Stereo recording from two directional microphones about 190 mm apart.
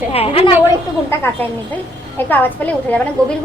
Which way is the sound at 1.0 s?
10° left (ahead or behind).